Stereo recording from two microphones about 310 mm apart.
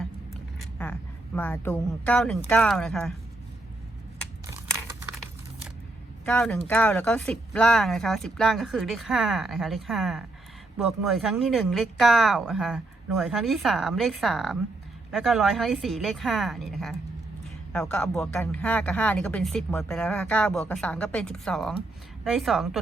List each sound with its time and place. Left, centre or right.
0.6 s vehicle: centre
1.4 s speech: centre
6.2 s speech: centre